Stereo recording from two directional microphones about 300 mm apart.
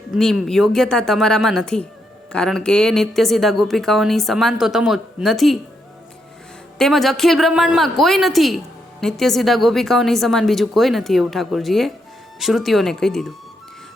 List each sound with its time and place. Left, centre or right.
0.1 s a man's voice: centre
6.7 s a man's voice: centre